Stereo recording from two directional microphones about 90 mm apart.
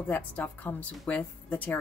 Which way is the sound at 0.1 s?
20° left (ahead or behind).